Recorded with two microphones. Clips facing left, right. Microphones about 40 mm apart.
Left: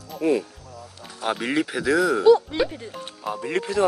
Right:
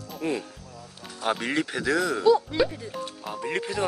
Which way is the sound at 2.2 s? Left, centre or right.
Left.